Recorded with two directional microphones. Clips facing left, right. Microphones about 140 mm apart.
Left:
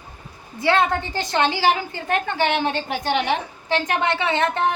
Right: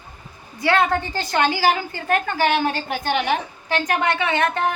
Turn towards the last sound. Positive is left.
turn(degrees=20)  # may be behind; listen again after turning